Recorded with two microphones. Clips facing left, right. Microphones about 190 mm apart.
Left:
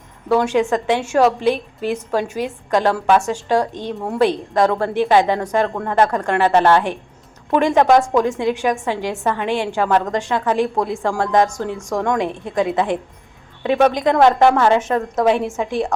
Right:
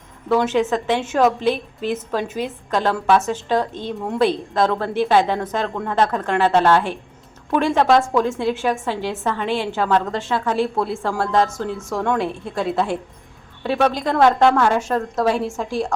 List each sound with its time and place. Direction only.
0.3 s a woman's voice: 10° left (ahead or behind)